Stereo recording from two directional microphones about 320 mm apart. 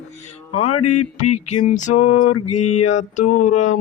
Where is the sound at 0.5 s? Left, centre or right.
Left.